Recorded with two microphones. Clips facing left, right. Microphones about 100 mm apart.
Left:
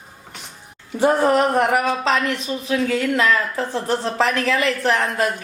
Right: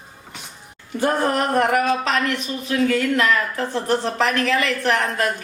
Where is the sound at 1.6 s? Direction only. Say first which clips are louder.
Even; 20° left (ahead or behind).